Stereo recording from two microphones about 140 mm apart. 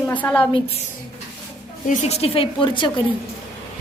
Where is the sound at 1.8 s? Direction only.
60° left (ahead or behind); by 2.9 s 35° left (ahead or behind).